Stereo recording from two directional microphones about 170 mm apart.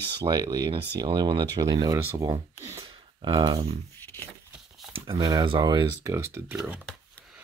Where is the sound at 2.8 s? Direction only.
30° right (ahead or behind).